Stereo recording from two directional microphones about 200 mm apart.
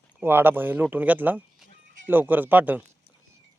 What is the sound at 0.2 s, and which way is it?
Speech, 10° right (ahead or behind).